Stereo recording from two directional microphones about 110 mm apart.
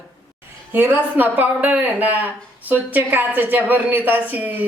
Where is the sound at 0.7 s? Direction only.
15° right (ahead or behind).